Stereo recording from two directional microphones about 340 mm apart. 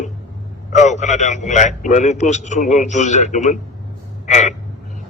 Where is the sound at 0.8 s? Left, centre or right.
Left.